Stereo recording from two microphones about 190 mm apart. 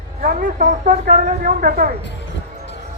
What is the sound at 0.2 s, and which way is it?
Speech, 45° right (ahead or behind).